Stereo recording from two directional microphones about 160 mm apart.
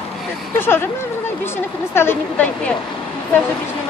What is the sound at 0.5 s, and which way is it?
Speech, 15° left (ahead or behind).